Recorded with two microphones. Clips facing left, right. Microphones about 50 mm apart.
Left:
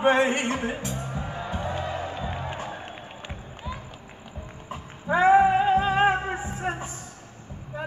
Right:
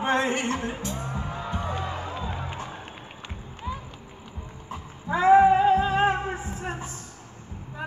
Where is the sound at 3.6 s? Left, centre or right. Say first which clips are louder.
Right 3 dB; centre.